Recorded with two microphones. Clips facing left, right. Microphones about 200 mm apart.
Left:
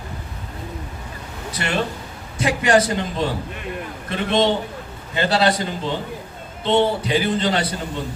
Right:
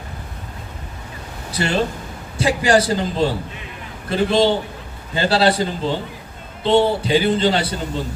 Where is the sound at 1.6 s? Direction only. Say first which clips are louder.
Right 4 dB; 30° right (ahead or behind).